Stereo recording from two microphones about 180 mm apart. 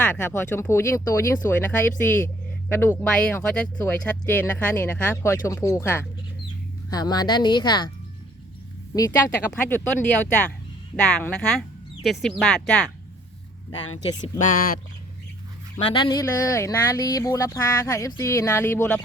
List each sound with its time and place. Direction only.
0.0 s speech: 10° left (ahead or behind)
9.0 s speech: 15° left (ahead or behind)
15.8 s speech: 25° left (ahead or behind)